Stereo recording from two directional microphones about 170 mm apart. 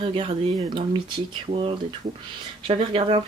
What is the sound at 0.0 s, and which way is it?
Speech, 35° right (ahead or behind).